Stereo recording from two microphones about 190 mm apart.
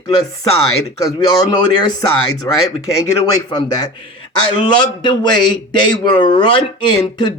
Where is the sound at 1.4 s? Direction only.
20° left (ahead or behind).